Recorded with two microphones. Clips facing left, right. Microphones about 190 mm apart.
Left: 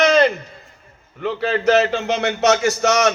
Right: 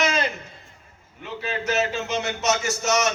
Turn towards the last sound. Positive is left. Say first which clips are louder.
# left 6 dB
turn(degrees=65)  # may be behind; listen again after turning